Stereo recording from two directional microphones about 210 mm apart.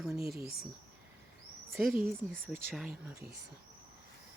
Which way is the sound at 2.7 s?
5° right (ahead or behind).